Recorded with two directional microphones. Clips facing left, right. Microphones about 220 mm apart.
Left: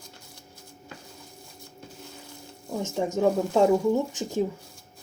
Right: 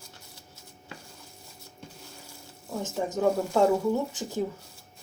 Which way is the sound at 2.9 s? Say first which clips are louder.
Left 2 dB; 20° left (ahead or behind).